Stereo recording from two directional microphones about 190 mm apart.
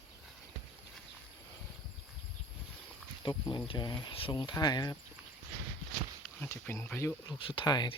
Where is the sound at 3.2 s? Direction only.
25° left (ahead or behind).